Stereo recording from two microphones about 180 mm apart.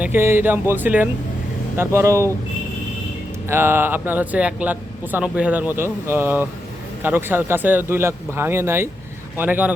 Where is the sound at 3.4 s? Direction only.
15° right (ahead or behind).